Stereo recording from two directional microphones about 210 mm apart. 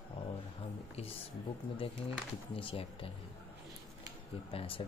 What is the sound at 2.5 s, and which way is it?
Speech, 25° left (ahead or behind).